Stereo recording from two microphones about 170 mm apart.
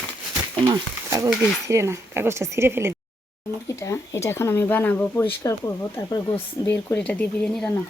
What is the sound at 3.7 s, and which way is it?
Speech, 15° left (ahead or behind).